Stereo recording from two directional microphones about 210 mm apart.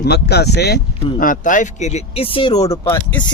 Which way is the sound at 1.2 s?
40° left (ahead or behind).